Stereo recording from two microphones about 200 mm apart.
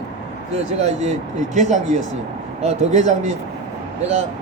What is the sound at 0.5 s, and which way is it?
Speech, 35° right (ahead or behind).